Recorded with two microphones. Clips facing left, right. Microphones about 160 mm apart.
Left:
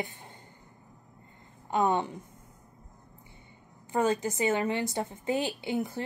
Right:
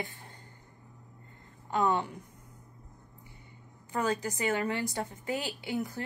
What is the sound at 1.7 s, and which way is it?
Speech, 20° left (ahead or behind).